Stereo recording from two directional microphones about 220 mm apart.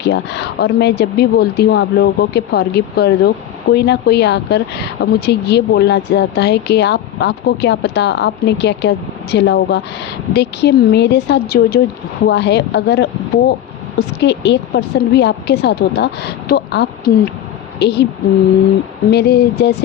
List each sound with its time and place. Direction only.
0.0 s speech: 50° left (ahead or behind)
19.1 s speech: 45° left (ahead or behind)